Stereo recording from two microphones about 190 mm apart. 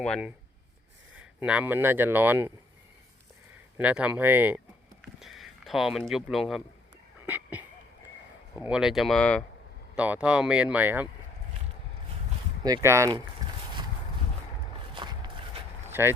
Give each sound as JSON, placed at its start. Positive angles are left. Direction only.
{"t": 0.0, "sound": "speech", "side_deg": 5}
{"t": 1.4, "sound": "speech", "side_deg": -5}
{"t": 3.8, "sound": "speech", "side_deg": -5}
{"t": 5.2, "sound": "a sound", "side_deg": 0}
{"t": 6.1, "sound": "speech", "side_deg": 0}
{"t": 7.3, "sound": "a sound", "side_deg": -10}
{"t": 8.5, "sound": "speech", "side_deg": -10}
{"t": 9.9, "sound": "speech", "side_deg": -5}
{"t": 12.6, "sound": "speech", "side_deg": -15}
{"t": 14.9, "sound": "a sound", "side_deg": -25}
{"t": 15.9, "sound": "speech", "side_deg": -10}